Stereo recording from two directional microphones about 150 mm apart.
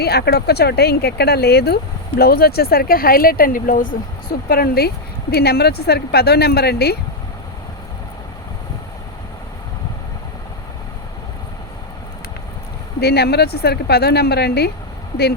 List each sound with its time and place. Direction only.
0.0 s speech: 90° left
13.0 s speech: 90° left